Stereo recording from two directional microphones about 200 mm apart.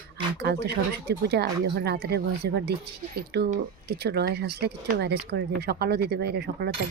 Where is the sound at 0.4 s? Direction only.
55° right (ahead or behind).